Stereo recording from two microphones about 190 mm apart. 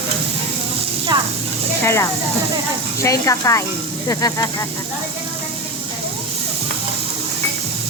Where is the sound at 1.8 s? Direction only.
15° left (ahead or behind).